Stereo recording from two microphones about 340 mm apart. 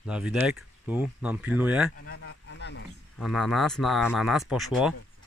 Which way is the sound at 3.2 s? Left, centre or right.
Centre.